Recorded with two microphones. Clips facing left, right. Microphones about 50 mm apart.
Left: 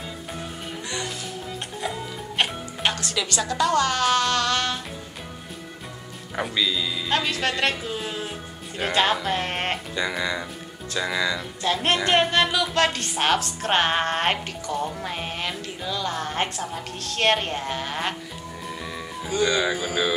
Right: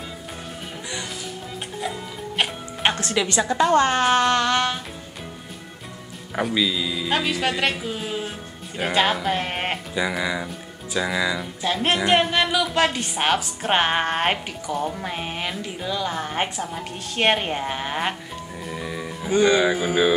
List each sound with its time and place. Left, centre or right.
0.8 s music: centre
2.8 s a woman's voice: right
6.3 s speech: centre
18.7 s music: centre
19.2 s a woman's voice: right